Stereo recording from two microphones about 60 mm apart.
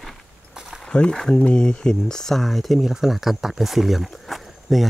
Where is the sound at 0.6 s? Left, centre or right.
Centre.